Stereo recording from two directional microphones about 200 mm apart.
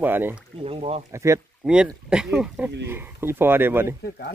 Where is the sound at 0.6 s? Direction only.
30° right (ahead or behind).